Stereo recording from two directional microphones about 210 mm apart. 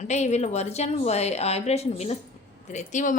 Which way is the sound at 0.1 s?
30° left (ahead or behind).